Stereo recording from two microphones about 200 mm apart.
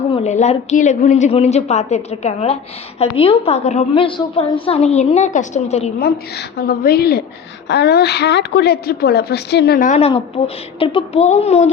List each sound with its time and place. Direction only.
0.1 s a woman's voice: 35° left (ahead or behind)
6.0 s a woman's voice: 50° left (ahead or behind); by 11.7 s 30° left (ahead or behind)